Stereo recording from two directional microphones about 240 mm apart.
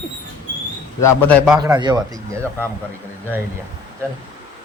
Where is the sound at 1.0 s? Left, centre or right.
Centre.